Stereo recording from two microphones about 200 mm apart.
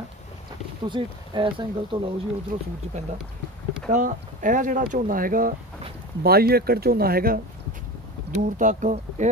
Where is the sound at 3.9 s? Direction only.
40° right (ahead or behind).